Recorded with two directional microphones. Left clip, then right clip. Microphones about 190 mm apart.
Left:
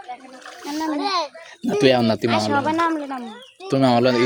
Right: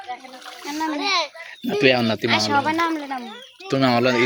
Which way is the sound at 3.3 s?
15° left (ahead or behind).